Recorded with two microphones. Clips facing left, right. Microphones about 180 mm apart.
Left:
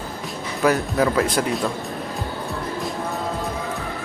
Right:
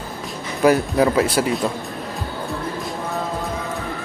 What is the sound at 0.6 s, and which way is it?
Speech, 15° right (ahead or behind).